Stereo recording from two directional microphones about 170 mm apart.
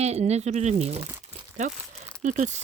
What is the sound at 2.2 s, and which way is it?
Speech, 45° right (ahead or behind).